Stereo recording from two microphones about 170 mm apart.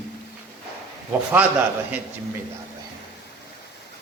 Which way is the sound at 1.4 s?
10° right (ahead or behind).